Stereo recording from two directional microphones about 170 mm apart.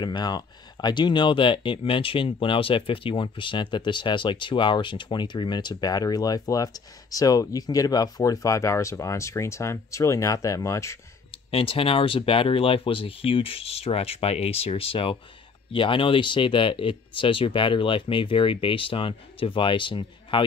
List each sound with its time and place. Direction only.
0.0 s speech: 25° left (ahead or behind)
11.5 s speech: 35° left (ahead or behind)